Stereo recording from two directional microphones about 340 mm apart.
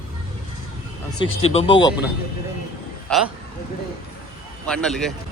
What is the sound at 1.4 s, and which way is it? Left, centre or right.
Speech, centre.